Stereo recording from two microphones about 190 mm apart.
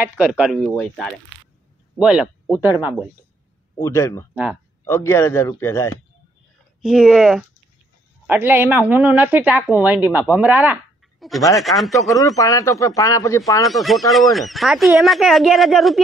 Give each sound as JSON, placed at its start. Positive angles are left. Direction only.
{"t": 0.0, "sound": "speech", "side_deg": -5}
{"t": 3.8, "sound": "a man's voice", "side_deg": 15}
{"t": 6.8, "sound": "a woman's voice", "side_deg": 0}
{"t": 12.1, "sound": "a man's voice", "side_deg": 15}
{"t": 13.7, "sound": "speech", "side_deg": 0}